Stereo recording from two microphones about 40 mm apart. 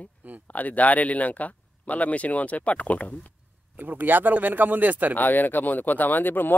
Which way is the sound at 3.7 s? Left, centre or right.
Right.